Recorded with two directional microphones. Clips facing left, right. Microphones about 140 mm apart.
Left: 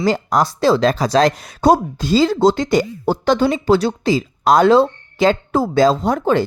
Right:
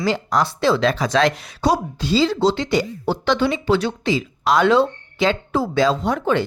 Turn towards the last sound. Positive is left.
turn(degrees=40)  # may be behind; listen again after turning